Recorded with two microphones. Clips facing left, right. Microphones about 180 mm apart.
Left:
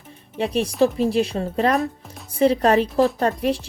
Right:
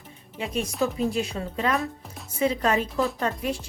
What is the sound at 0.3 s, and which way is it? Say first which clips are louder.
A woman's voice: left 7 dB; 35° left (ahead or behind).